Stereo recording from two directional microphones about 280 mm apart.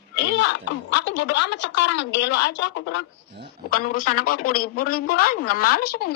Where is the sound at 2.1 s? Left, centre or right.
Left.